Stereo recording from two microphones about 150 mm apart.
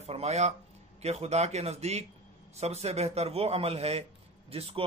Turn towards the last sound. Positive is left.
turn(degrees=-40)  # may be behind; listen again after turning